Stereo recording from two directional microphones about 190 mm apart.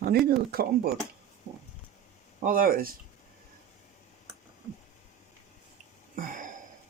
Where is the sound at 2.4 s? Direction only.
45° right (ahead or behind).